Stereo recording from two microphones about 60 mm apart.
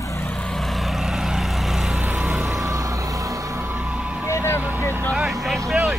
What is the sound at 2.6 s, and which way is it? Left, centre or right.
Vehicle, right.